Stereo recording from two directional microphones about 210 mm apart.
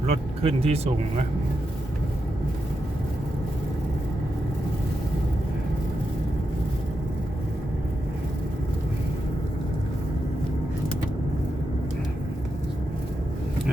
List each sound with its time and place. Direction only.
0.0 s speech: 30° right (ahead or behind)